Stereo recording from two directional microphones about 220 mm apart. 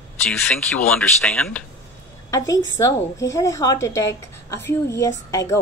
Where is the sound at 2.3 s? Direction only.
15° left (ahead or behind).